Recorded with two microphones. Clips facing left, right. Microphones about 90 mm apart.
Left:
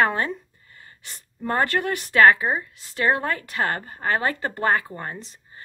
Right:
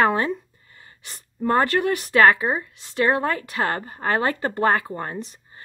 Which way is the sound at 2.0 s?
30° right (ahead or behind).